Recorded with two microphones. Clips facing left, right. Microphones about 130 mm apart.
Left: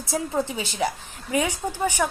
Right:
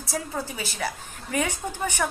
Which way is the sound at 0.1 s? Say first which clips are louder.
Left 5 dB; 25° left (ahead or behind).